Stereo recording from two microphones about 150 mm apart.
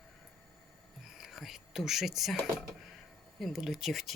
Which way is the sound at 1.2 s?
Centre (ahead or behind).